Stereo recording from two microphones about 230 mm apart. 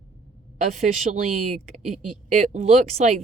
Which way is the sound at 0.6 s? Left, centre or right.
Right.